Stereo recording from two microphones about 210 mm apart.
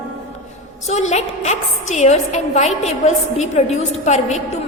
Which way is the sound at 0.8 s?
30° left (ahead or behind).